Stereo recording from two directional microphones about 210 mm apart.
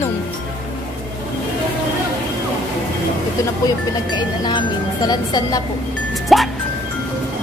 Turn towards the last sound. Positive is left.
turn(degrees=0)  # may be behind; listen again after turning